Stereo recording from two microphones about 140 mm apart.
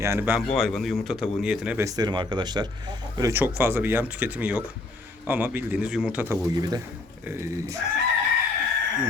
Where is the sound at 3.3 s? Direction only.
15° right (ahead or behind).